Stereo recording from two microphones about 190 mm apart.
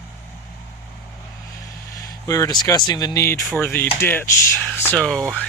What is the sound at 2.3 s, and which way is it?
Speech, 20° left (ahead or behind).